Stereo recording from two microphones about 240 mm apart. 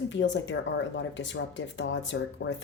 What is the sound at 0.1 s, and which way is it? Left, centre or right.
Speech, left.